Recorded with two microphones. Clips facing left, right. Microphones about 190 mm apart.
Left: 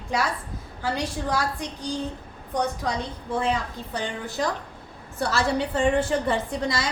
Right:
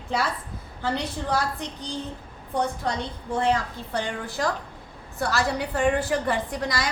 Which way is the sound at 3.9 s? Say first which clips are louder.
Right 2 dB; 20° left (ahead or behind).